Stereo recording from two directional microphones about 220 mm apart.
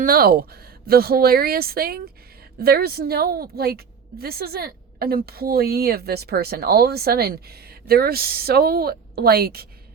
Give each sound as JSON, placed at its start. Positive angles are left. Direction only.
{"t": 0.0, "sound": "a woman's voice", "side_deg": -40}